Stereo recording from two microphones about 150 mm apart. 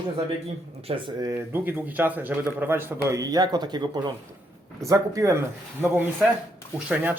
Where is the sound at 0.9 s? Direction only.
35° right (ahead or behind).